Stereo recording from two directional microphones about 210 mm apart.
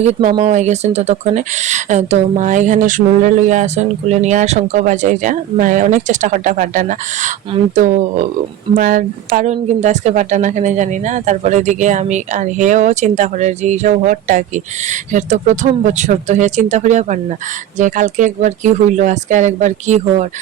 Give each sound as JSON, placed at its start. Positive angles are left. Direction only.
{"t": 0.0, "sound": "speech", "side_deg": -35}